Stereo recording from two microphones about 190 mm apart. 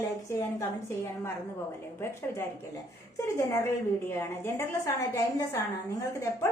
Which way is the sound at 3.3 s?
15° left (ahead or behind).